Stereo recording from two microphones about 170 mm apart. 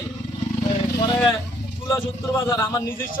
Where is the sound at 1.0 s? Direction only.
25° left (ahead or behind).